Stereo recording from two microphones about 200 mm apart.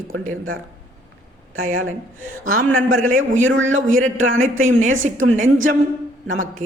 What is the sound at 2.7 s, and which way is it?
A man's voice, 80° right.